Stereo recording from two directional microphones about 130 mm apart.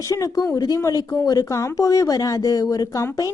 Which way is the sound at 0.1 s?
25° left (ahead or behind).